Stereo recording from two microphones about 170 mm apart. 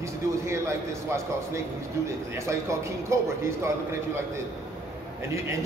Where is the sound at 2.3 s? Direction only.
15° right (ahead or behind).